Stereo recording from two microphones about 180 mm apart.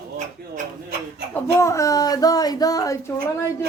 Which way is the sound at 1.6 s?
15° left (ahead or behind).